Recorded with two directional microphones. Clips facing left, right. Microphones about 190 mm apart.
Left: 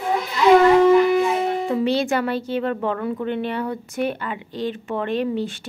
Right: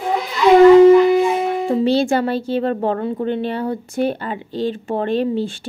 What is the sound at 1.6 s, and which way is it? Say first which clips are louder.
Speech: right 4 dB; 30° right (ahead or behind).